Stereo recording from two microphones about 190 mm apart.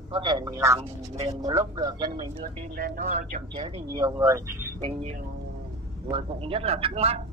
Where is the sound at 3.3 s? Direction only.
30° right (ahead or behind).